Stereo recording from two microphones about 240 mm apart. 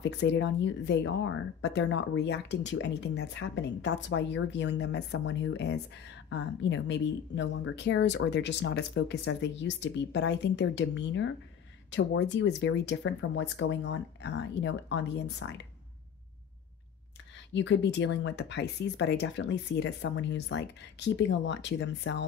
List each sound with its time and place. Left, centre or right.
0.0 s speech: left
17.5 s speech: left